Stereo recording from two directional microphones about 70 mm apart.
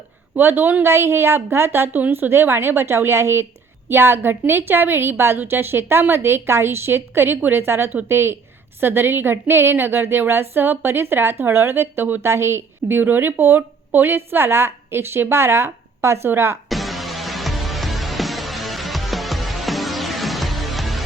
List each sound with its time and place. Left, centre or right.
0.3 s a woman's voice: right
16.6 s music: centre